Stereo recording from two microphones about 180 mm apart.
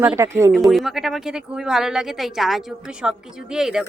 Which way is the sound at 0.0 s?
10° right (ahead or behind).